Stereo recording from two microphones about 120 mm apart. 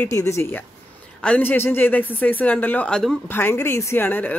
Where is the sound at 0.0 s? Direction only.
25° left (ahead or behind).